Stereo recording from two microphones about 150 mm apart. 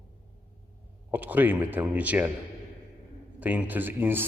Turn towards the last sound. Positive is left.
turn(degrees=-15)  # may be behind; listen again after turning